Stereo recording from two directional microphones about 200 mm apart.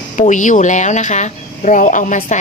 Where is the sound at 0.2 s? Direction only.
40° left (ahead or behind).